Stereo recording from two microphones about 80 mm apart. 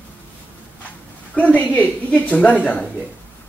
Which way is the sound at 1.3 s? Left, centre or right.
Centre.